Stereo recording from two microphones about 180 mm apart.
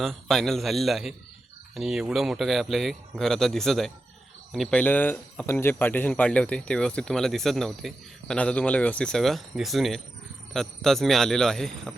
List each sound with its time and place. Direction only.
0.0 s speech: centre (ahead or behind)